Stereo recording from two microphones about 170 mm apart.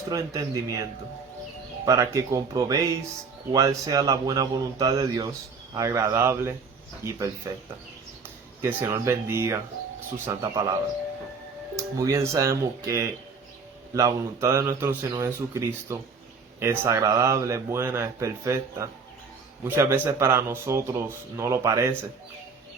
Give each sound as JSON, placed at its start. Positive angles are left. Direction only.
{"t": 0.1, "sound": "speech", "side_deg": -20}
{"t": 8.6, "sound": "speech", "side_deg": -15}
{"t": 11.8, "sound": "speech", "side_deg": -20}